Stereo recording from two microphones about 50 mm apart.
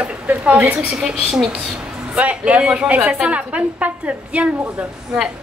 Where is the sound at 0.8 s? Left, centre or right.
Centre.